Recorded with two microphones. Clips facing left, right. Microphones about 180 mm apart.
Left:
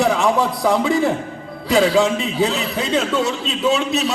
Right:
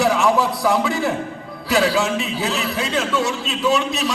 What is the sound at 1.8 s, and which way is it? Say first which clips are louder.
Speech: left 3 dB; centre (ahead or behind).